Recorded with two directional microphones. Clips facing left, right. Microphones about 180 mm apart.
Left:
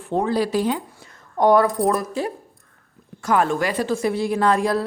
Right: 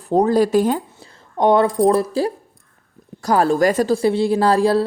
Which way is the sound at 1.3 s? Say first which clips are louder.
Right 1 dB; 25° right (ahead or behind).